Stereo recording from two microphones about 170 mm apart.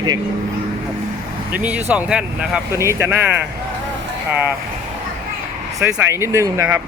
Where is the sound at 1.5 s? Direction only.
10° right (ahead or behind).